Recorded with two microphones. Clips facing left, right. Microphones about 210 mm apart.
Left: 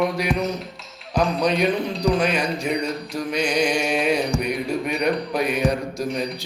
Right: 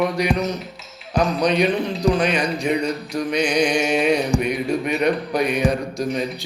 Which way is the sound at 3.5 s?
55° right (ahead or behind).